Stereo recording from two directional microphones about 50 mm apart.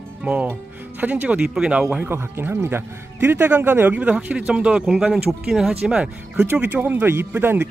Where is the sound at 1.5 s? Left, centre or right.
Centre.